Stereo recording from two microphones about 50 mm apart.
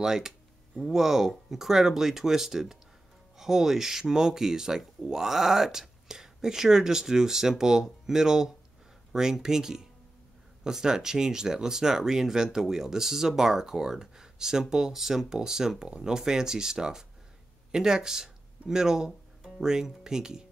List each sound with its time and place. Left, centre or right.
0.0 s speech: centre